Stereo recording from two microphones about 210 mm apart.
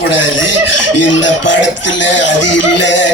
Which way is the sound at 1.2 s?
60° left (ahead or behind).